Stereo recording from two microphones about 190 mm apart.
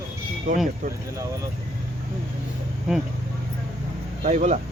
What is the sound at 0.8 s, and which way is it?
Speech, 40° right (ahead or behind).